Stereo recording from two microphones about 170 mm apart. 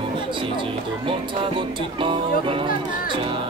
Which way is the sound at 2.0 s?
30° right (ahead or behind).